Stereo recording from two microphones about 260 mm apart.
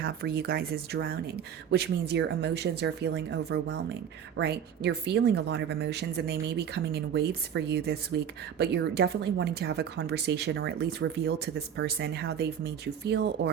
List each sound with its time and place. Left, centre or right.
0.0 s speech: right